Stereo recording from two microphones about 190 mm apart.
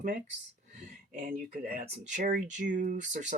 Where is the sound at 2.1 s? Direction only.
45° right (ahead or behind).